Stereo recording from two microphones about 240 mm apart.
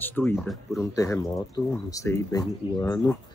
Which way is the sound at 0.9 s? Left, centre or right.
Centre.